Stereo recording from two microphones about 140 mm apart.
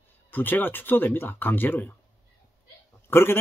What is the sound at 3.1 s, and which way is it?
Speech, 15° left (ahead or behind).